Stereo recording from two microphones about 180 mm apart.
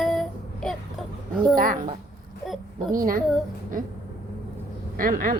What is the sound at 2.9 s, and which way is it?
Speech, 50° right (ahead or behind).